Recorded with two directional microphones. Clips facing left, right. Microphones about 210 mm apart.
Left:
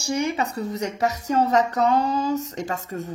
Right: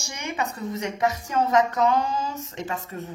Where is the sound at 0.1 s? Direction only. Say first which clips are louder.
Left 7 dB; 35° left (ahead or behind).